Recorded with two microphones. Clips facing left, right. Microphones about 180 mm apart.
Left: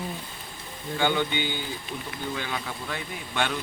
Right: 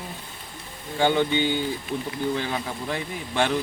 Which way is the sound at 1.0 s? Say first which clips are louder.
Right 5 dB; 30° right (ahead or behind).